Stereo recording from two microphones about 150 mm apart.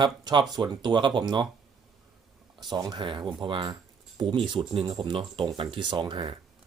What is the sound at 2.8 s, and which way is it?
Speech, 30° right (ahead or behind).